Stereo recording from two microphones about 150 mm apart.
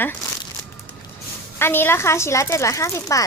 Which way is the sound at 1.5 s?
15° left (ahead or behind).